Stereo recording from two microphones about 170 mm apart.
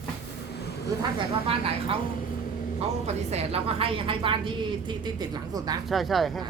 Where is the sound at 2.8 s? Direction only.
40° right (ahead or behind); by 5.7 s 25° right (ahead or behind).